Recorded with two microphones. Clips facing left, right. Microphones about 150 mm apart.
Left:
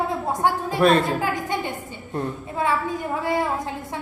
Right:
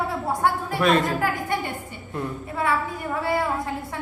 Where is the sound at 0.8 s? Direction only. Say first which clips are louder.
Left 3 dB; 35° left (ahead or behind).